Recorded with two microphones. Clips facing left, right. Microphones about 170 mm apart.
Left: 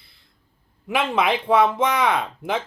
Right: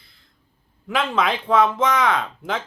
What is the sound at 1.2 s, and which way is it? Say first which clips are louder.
Speech: left 1 dB; 15° left (ahead or behind).